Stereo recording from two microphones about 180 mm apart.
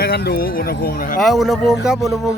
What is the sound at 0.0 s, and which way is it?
Speech, 60° left (ahead or behind).